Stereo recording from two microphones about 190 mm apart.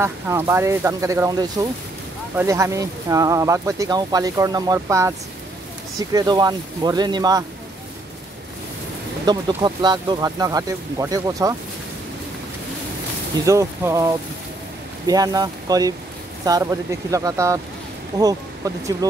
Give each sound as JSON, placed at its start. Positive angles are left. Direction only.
{"t": 0.0, "sound": "speech", "side_deg": -15}
{"t": 9.2, "sound": "speech", "side_deg": -20}
{"t": 13.5, "sound": "speech", "side_deg": -15}